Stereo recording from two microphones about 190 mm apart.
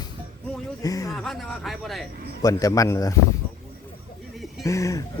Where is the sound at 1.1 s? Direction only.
Centre (ahead or behind).